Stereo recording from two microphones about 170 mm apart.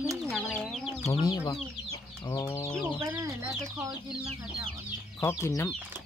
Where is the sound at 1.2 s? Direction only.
20° left (ahead or behind).